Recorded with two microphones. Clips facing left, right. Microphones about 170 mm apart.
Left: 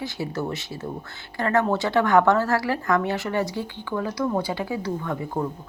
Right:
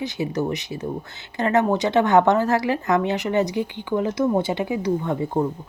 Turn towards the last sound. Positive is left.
turn(degrees=-25)  # may be behind; listen again after turning